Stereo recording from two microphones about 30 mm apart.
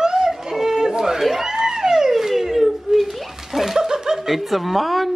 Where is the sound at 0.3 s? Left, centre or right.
Centre.